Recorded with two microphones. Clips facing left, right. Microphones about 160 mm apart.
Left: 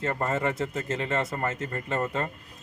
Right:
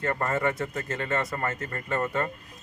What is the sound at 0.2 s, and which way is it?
Speech, 25° left (ahead or behind).